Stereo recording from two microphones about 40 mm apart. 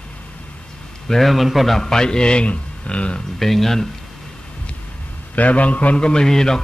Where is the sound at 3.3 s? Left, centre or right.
Centre.